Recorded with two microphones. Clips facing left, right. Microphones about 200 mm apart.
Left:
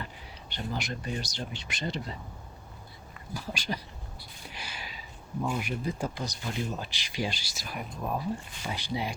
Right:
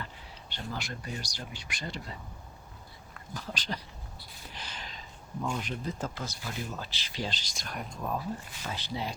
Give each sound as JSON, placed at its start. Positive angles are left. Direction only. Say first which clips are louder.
{"t": 0.5, "sound": "speech", "louder": "left 4 dB", "side_deg": 20}
{"t": 3.2, "sound": "speech", "louder": "left 2 dB", "side_deg": 10}